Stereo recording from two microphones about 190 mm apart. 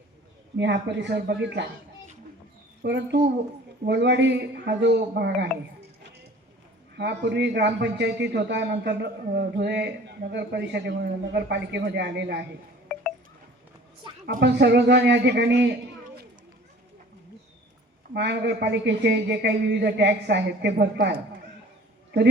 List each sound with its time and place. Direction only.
0.5 s a man's voice: 65° right (ahead or behind)
2.8 s a man's voice: 65° right (ahead or behind)
6.9 s a man's voice: 65° right (ahead or behind)
14.3 s speech: 45° right (ahead or behind)
14.5 s a man's voice: 65° right (ahead or behind)
18.1 s a man's voice: 65° right (ahead or behind)